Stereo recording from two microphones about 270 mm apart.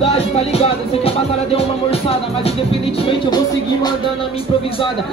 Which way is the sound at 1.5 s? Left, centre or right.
Left.